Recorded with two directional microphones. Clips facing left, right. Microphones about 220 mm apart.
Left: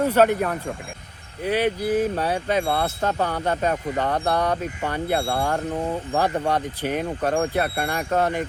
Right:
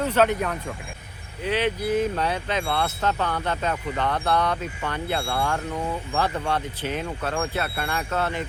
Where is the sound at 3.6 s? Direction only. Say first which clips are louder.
Left 2 dB; 35° left (ahead or behind).